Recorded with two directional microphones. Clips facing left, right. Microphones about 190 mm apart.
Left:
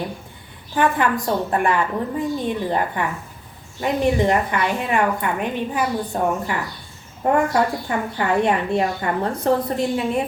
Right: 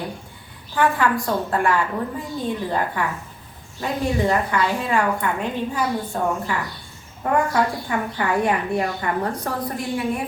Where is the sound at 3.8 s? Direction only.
20° left (ahead or behind).